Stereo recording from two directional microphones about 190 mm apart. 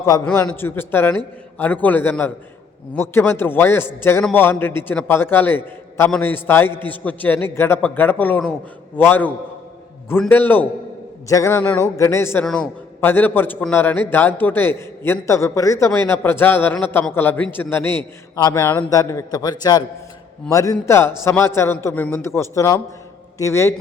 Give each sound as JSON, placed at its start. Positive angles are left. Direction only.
{"t": 0.0, "sound": "a man's voice", "side_deg": 20}